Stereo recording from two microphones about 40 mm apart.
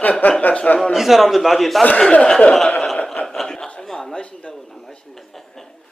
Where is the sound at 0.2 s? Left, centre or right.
Left.